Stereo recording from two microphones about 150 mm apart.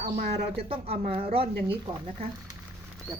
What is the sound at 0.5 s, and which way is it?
Speech, 40° right (ahead or behind).